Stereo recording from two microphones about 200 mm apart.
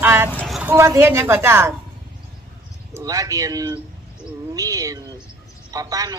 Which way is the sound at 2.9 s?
15° right (ahead or behind).